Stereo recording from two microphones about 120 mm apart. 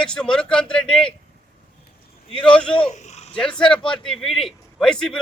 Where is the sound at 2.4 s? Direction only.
10° left (ahead or behind).